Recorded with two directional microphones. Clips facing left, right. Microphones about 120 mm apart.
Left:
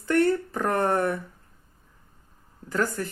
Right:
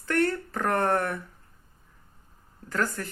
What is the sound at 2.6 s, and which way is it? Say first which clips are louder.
Speech: left 3 dB; 20° left (ahead or behind).